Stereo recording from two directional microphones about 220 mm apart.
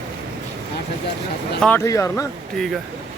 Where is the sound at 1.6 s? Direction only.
10° left (ahead or behind).